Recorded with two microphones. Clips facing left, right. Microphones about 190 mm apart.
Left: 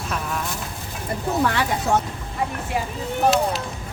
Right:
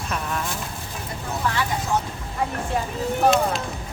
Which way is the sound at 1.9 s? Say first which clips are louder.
Left 4 dB; 50° left (ahead or behind).